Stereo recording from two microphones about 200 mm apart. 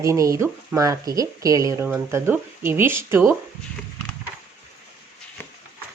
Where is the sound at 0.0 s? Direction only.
15° right (ahead or behind).